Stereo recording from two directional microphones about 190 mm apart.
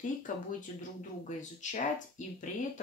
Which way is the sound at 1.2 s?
40° left (ahead or behind).